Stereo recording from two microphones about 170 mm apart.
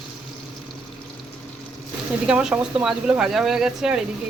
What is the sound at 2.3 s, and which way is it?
Speech, 5° right (ahead or behind).